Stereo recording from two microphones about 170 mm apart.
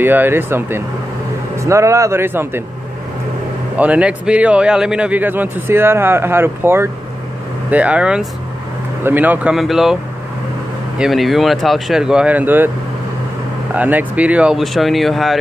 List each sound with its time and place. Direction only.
0.0 s speech: 10° right (ahead or behind)
3.7 s speech: 10° right (ahead or behind)
11.0 s speech: centre (ahead or behind)
13.7 s speech: 10° right (ahead or behind)